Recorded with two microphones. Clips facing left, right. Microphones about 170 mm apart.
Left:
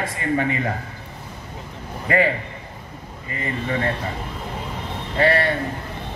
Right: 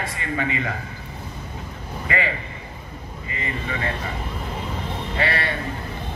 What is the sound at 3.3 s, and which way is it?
Speech, 40° left (ahead or behind).